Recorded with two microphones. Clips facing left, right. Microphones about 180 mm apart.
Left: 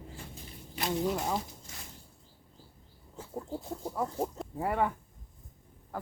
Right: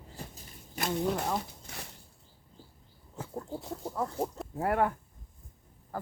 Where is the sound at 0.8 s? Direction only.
45° right (ahead or behind).